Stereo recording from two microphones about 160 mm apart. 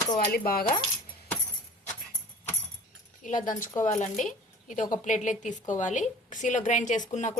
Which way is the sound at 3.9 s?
50° left (ahead or behind).